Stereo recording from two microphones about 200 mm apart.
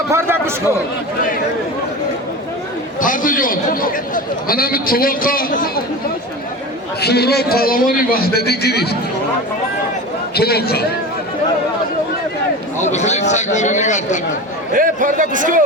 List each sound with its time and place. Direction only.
0.1 s a man's voice: 10° right (ahead or behind)
3.0 s a man's voice: 40° left (ahead or behind)
7.0 s a man's voice: 55° left (ahead or behind)
10.3 s a man's voice: 50° left (ahead or behind)
12.8 s a man's voice: 35° left (ahead or behind)
14.7 s a man's voice: 40° right (ahead or behind)